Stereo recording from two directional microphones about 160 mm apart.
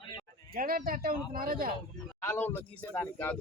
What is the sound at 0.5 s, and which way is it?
A man's voice, 65° right (ahead or behind).